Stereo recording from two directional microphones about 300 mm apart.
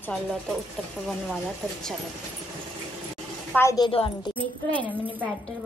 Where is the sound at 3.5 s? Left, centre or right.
Centre.